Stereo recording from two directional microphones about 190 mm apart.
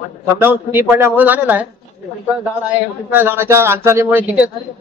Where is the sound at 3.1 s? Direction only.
10° right (ahead or behind).